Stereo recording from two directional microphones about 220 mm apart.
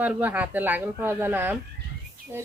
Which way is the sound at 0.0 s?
5° right (ahead or behind).